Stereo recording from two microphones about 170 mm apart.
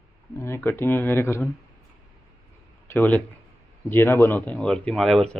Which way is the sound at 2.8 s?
10° left (ahead or behind).